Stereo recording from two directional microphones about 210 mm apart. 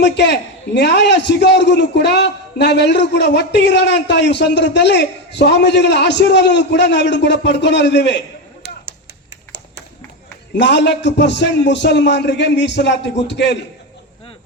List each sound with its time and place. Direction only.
0.0 s a man's voice: 55° left (ahead or behind)
10.5 s a man's voice: 55° left (ahead or behind)